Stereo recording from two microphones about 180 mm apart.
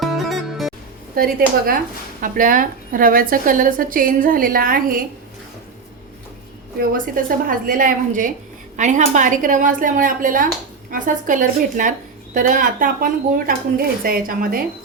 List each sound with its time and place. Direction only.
0.0 s music: centre (ahead or behind)
1.1 s a woman's voice: 55° right (ahead or behind)
6.9 s a woman's voice: 50° right (ahead or behind)